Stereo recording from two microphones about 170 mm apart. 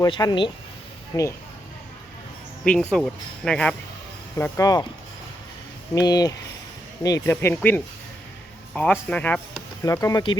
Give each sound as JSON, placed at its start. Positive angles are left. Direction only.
{"t": 0.0, "sound": "speech", "side_deg": 25}
{"t": 2.6, "sound": "speech", "side_deg": 5}
{"t": 4.4, "sound": "speech", "side_deg": 15}
{"t": 5.9, "sound": "speech", "side_deg": 20}
{"t": 9.8, "sound": "speech", "side_deg": 20}